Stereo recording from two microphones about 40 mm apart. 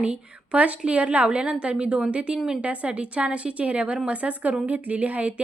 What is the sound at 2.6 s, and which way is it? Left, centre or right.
A woman's voice, right.